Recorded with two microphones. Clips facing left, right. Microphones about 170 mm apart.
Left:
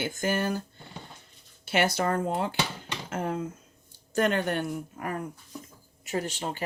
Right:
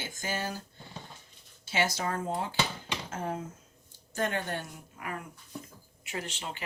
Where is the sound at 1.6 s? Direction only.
60° left (ahead or behind).